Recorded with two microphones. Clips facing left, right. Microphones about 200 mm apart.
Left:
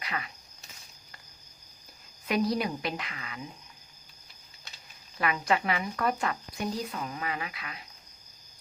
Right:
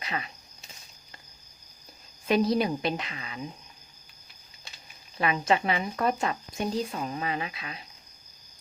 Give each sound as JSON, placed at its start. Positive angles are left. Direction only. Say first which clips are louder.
{"t": 0.0, "sound": "speech", "louder": "right 2 dB", "side_deg": -25}
{"t": 2.2, "sound": "speech", "louder": "right 4 dB", "side_deg": -25}
{"t": 5.1, "sound": "speech", "louder": "right 3 dB", "side_deg": -25}